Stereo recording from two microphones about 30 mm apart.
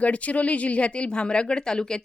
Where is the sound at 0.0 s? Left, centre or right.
Left.